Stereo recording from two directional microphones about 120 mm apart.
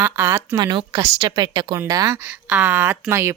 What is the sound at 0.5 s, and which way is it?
A woman's voice, 40° right (ahead or behind).